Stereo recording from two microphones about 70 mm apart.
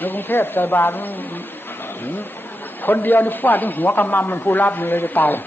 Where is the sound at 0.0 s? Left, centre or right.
Left.